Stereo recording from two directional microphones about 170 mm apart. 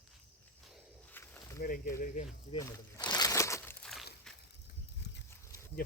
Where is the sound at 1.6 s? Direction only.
55° left (ahead or behind).